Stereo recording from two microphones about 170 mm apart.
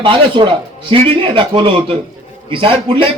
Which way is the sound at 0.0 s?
30° right (ahead or behind).